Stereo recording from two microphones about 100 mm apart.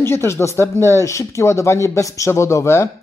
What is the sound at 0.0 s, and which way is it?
A man's voice, 25° left (ahead or behind).